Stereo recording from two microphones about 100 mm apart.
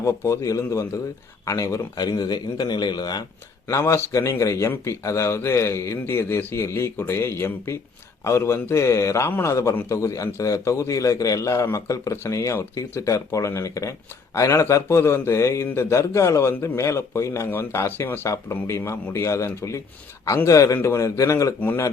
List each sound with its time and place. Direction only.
0.0 s a man's voice: 35° left (ahead or behind)